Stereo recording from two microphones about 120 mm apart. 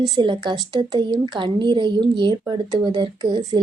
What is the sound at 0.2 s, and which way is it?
Speech, 40° right (ahead or behind).